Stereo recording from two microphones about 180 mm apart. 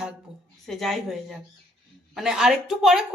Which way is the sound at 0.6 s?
Centre (ahead or behind).